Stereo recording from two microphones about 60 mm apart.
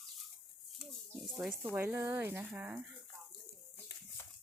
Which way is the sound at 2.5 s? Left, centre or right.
Right.